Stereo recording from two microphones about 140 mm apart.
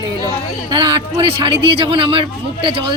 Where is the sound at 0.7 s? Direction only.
35° right (ahead or behind).